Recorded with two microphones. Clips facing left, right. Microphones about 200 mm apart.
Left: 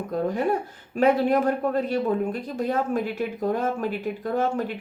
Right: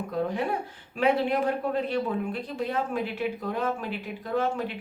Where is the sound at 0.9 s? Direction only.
45° left (ahead or behind).